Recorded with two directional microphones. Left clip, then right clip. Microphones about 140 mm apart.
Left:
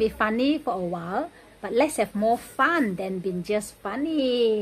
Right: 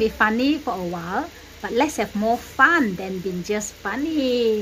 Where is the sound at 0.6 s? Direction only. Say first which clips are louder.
Right 1 dB; 10° left (ahead or behind).